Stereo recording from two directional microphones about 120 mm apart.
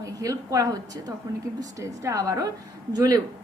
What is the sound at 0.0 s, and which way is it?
A woman's voice, 30° right (ahead or behind).